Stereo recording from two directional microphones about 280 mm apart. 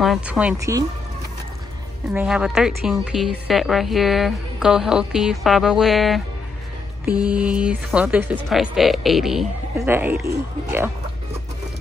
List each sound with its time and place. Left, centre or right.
0.0 s a woman's voice: centre
2.1 s a woman's voice: centre
7.2 s a woman's voice: centre